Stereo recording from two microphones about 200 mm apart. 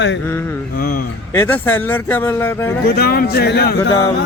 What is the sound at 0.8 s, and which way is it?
Speech, 50° left (ahead or behind).